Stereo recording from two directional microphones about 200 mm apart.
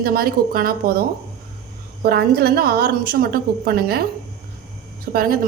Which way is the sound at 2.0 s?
50° right (ahead or behind).